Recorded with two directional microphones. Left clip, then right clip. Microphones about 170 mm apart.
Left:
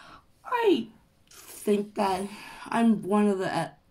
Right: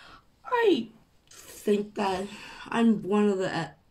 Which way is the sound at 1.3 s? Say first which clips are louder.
Even; 5° left (ahead or behind).